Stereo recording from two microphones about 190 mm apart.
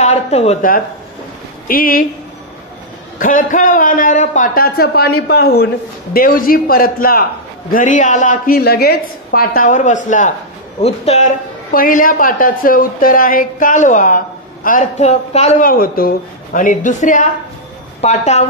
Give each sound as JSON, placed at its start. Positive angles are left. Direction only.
{"t": 0.0, "sound": "a woman's voice", "side_deg": 35}
{"t": 1.7, "sound": "a woman's voice", "side_deg": 50}
{"t": 3.2, "sound": "a woman's voice", "side_deg": 45}
{"t": 15.7, "sound": "a woman's voice", "side_deg": 50}